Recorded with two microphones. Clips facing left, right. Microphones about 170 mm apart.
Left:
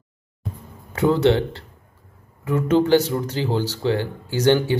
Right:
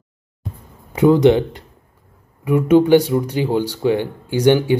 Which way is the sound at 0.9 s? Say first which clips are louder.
Right 5 dB; 15° right (ahead or behind).